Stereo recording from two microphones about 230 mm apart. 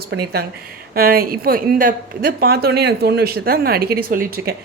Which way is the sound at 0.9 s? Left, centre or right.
Right.